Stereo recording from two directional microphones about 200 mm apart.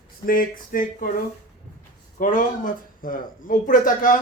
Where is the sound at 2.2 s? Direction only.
40° left (ahead or behind).